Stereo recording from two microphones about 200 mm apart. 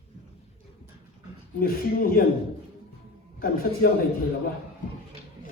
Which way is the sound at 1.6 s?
45° left (ahead or behind).